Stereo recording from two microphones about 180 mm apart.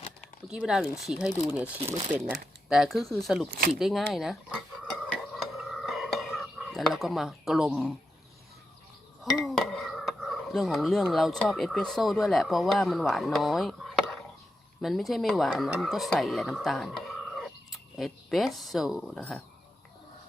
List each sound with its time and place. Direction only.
0.4 s speech: 5° right (ahead or behind)
1.8 s speech: 35° right (ahead or behind)
2.1 s speech: 5° right (ahead or behind)
3.8 s stir: centre (ahead or behind)
9.3 s speech: centre (ahead or behind)